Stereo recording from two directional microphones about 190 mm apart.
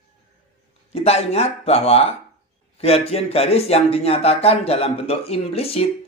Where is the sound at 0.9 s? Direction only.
35° left (ahead or behind).